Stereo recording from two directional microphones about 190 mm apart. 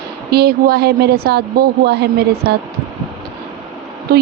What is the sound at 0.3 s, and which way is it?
A woman's voice, 55° right (ahead or behind).